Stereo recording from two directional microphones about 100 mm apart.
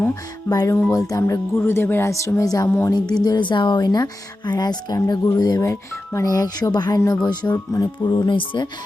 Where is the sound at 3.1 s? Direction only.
45° left (ahead or behind).